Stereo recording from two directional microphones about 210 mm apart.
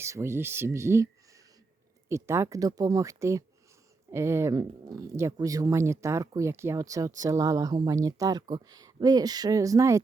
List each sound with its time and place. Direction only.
0.0 s speech: 15° right (ahead or behind)
2.0 s speech: 15° right (ahead or behind)